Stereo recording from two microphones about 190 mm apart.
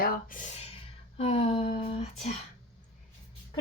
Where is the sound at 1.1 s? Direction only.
30° left (ahead or behind).